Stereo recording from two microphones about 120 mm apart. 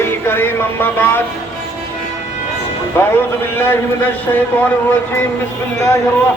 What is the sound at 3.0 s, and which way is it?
A man's voice, 20° left (ahead or behind).